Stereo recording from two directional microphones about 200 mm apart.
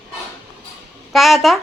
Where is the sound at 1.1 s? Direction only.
Centre (ahead or behind).